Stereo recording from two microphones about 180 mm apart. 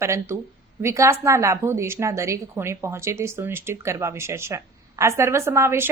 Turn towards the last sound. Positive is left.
turn(degrees=-15)  # may be behind; listen again after turning